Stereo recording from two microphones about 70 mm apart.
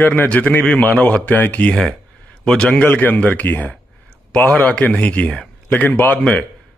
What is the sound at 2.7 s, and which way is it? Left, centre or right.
Speech, left.